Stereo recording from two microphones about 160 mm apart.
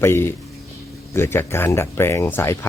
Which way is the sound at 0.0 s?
15° left (ahead or behind).